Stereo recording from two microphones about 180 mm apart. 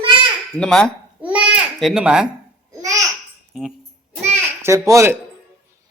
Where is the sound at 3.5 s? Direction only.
Centre (ahead or behind).